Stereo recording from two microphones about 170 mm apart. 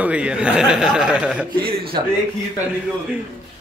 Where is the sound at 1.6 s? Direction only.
60° right (ahead or behind).